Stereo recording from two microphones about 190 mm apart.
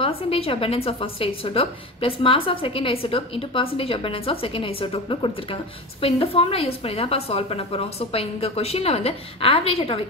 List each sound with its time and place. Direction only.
0.0 s a woman's voice: 30° left (ahead or behind)